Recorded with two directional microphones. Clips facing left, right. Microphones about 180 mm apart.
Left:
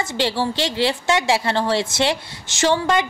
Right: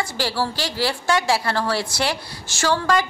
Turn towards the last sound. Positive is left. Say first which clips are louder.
# left 2 dB
turn(degrees=20)  # may be behind; listen again after turning